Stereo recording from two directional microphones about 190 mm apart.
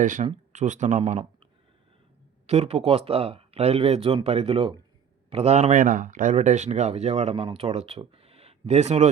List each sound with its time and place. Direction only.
0.0 s speech: 45° right (ahead or behind)
2.5 s speech: 35° right (ahead or behind)